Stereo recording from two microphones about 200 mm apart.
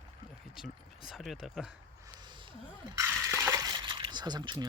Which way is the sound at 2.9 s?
15° right (ahead or behind).